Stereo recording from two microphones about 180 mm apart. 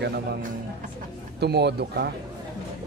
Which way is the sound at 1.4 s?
65° right (ahead or behind).